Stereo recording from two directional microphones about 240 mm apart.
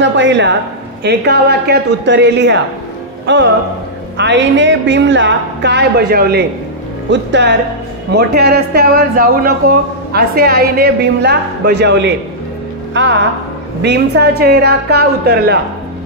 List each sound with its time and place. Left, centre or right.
0.0 s a man's voice: right